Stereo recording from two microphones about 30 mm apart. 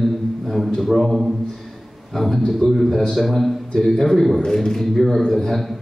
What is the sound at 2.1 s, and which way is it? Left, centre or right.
A man's voice, centre.